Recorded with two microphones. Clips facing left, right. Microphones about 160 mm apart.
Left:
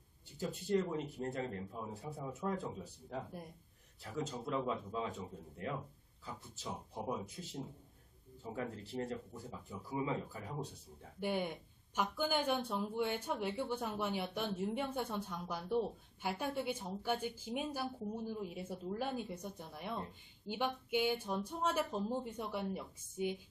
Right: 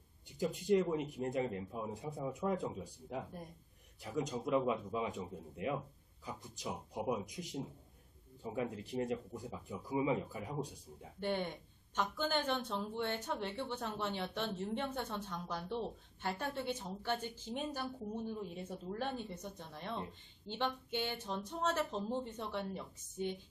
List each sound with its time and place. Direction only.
0.4 s a man's voice: 15° right (ahead or behind)
11.1 s speech: 10° left (ahead or behind)